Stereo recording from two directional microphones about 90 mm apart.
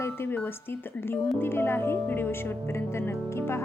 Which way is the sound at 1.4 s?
25° left (ahead or behind).